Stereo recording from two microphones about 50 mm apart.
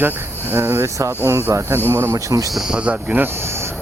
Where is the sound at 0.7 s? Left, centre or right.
Right.